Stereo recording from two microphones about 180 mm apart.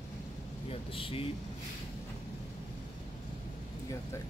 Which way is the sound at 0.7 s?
30° left (ahead or behind).